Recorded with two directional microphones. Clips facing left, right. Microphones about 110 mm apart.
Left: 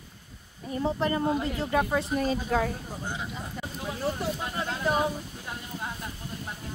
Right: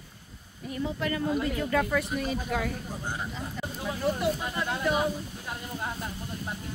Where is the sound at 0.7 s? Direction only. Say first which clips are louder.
Left 3 dB; 30° left (ahead or behind).